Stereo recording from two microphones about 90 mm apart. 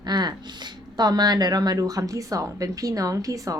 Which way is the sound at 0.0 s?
50° right (ahead or behind).